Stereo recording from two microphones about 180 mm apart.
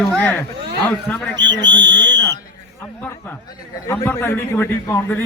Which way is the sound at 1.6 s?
85° right.